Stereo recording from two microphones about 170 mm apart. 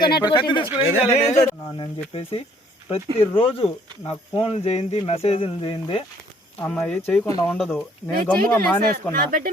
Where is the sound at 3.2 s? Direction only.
30° left (ahead or behind).